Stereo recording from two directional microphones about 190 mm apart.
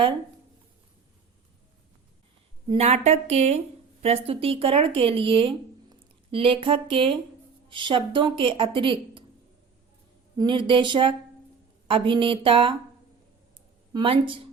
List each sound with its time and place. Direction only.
2.6 s a woman's voice: 35° right (ahead or behind)
10.3 s speech: 25° right (ahead or behind)
13.9 s speech: 25° right (ahead or behind)